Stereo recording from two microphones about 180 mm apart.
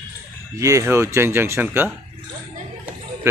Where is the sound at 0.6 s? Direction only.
15° right (ahead or behind).